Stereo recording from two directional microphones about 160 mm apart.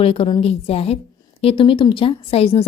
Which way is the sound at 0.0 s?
35° left (ahead or behind).